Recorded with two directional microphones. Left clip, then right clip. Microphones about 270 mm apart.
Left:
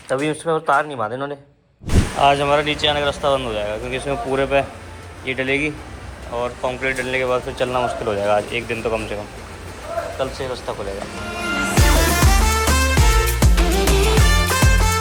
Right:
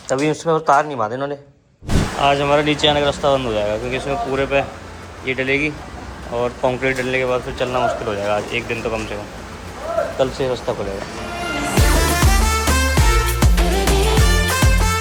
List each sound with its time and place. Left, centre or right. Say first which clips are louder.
0.1 s speech: right 2 dB; centre
10.4 s speech: right 5 dB; centre
11.7 s music: right 1 dB; centre